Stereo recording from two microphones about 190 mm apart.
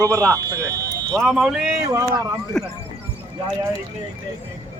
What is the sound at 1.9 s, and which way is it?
Speech, 15° right (ahead or behind).